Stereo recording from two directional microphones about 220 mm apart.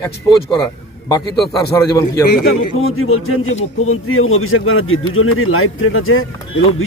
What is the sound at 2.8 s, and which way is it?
Speech, 70° left (ahead or behind).